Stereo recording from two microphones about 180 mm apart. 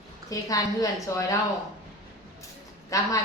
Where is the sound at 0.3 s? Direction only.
20° left (ahead or behind).